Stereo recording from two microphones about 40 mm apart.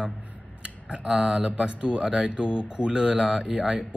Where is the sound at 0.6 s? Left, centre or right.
Right.